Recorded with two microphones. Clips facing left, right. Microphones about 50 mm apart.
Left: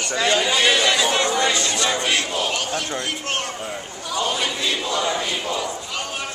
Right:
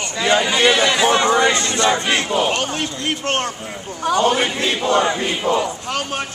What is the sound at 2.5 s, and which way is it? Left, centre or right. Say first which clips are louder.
A man's voice: right 3 dB; right.